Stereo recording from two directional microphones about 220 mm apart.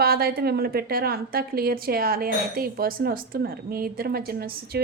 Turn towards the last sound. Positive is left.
turn(degrees=-45)  # may be behind; listen again after turning